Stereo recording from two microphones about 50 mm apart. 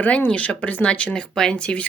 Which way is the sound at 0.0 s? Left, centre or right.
Left.